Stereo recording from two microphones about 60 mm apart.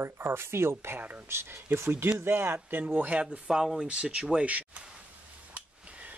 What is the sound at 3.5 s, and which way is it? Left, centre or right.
Speech, centre.